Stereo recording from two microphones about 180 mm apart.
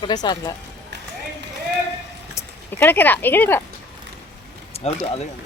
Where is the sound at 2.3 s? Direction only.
10° left (ahead or behind).